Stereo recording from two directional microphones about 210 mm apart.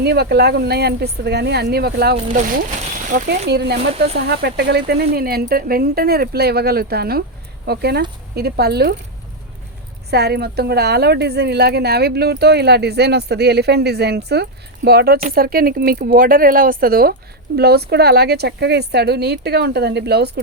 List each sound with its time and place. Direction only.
0.0 s a woman's voice: 50° right (ahead or behind)
3.5 s a woman's voice: 50° right (ahead or behind)
10.1 s a woman's voice: 50° right (ahead or behind)